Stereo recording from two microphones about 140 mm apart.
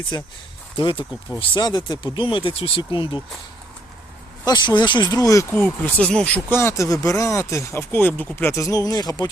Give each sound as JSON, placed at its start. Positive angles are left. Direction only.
{"t": 0.1, "sound": "speech", "side_deg": 30}
{"t": 4.4, "sound": "speech", "side_deg": 30}